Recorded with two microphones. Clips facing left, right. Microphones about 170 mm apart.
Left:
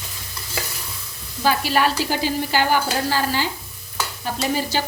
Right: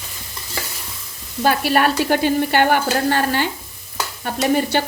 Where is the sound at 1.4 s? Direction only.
55° right (ahead or behind).